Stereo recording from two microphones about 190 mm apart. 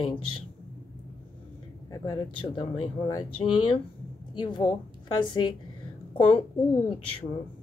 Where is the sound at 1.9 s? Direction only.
20° left (ahead or behind).